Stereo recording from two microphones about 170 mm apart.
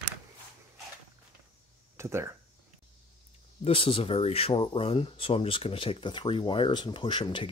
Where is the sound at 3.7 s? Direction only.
35° left (ahead or behind).